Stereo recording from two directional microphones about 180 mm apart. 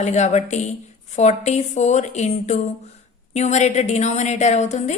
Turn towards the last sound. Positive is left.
turn(degrees=40)  # may be behind; listen again after turning